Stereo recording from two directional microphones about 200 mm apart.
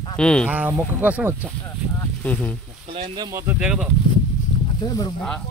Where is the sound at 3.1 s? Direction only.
15° right (ahead or behind).